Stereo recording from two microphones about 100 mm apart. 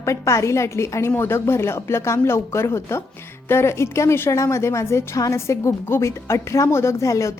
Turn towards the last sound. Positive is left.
turn(degrees=30)  # may be behind; listen again after turning